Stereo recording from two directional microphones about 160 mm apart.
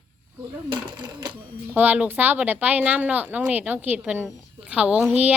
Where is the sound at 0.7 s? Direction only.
30° right (ahead or behind).